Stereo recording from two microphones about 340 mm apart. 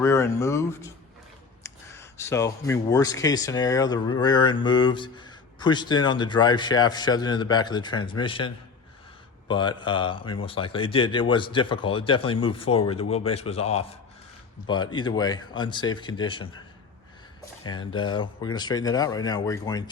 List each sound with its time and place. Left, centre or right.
0.0 s speech: centre
17.7 s speech: centre